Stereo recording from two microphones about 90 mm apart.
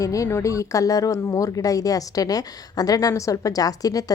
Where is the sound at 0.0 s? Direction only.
35° left (ahead or behind).